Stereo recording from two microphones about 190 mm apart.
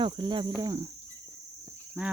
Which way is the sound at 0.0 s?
25° right (ahead or behind).